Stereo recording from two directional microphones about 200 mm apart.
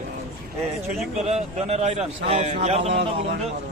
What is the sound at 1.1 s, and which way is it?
A man's voice, 35° right (ahead or behind).